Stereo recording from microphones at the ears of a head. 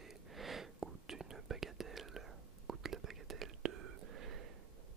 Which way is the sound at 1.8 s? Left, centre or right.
Right.